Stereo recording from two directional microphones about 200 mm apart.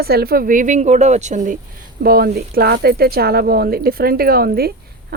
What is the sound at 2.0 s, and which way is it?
Speech, 50° right (ahead or behind).